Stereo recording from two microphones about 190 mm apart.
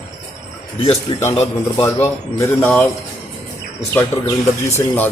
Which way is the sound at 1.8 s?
15° left (ahead or behind).